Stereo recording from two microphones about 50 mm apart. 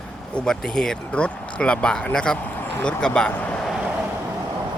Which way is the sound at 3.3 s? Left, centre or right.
Left.